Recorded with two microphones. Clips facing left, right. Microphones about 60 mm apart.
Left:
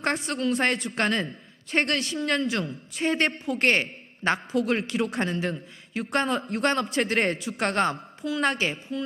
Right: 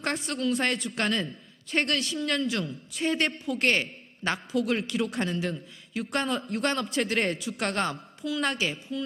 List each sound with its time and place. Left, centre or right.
0.0 s a woman's voice: left